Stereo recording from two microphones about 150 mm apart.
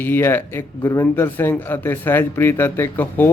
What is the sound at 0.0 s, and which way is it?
A man's voice, 15° left (ahead or behind).